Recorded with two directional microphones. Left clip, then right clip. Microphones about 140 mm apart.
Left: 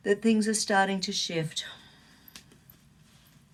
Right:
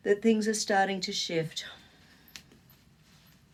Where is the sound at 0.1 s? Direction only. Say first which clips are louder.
Even; 40° right (ahead or behind).